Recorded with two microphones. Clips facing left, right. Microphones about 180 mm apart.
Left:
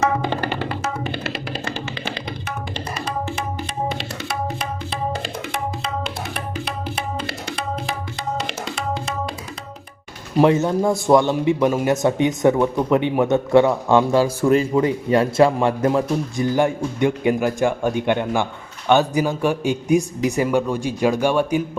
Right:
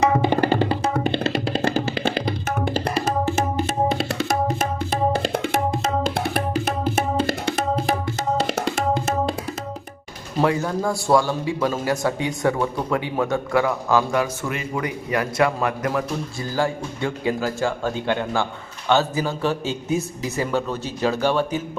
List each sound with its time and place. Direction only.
0.5 s music: 35° right (ahead or behind)
2.6 s tabla: 55° right (ahead or behind)
3.0 s tabla: 45° right (ahead or behind)
5.5 s music: 45° right (ahead or behind)
10.3 s a man's voice: 20° left (ahead or behind)